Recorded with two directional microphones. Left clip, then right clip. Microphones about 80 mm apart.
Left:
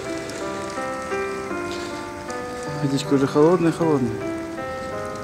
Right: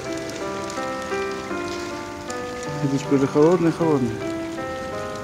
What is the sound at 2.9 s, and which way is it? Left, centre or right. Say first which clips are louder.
Speech: even; centre.